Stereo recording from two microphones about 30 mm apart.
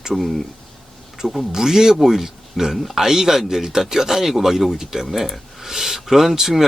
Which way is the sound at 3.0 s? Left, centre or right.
Centre.